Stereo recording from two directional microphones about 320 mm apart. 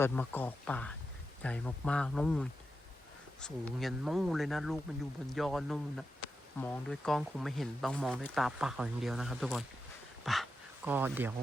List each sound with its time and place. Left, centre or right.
0.0 s speech: centre